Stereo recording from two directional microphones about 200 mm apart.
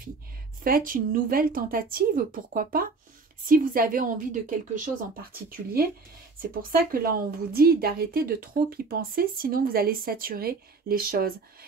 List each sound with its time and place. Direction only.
0.7 s a woman's voice: 45° right (ahead or behind)